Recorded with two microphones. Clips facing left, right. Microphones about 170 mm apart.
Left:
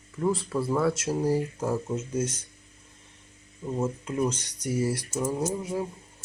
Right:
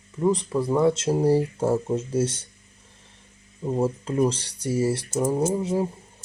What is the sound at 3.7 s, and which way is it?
Speech, 30° right (ahead or behind).